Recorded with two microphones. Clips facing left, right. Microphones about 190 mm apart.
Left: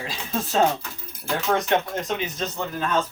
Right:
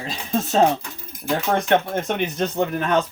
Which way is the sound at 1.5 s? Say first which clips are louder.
Right 3 dB; 60° right (ahead or behind).